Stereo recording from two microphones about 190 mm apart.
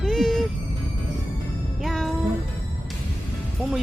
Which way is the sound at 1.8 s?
Centre (ahead or behind).